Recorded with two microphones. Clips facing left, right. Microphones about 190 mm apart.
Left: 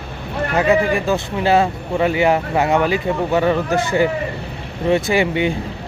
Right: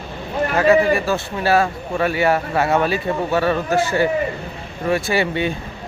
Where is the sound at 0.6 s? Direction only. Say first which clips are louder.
Right 1 dB; 15° left (ahead or behind).